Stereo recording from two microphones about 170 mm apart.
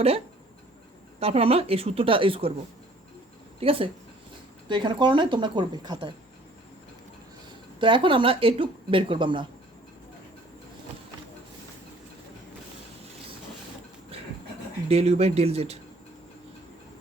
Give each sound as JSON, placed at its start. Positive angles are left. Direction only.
{"t": 1.2, "sound": "speech", "side_deg": -35}
{"t": 3.6, "sound": "a woman's voice", "side_deg": -35}
{"t": 7.8, "sound": "speech", "side_deg": -30}
{"t": 14.8, "sound": "speech", "side_deg": -40}